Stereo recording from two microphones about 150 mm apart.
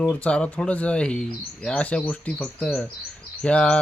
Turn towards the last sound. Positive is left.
turn(degrees=5)  # may be behind; listen again after turning